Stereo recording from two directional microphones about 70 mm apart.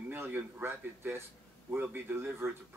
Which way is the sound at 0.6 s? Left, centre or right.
Right.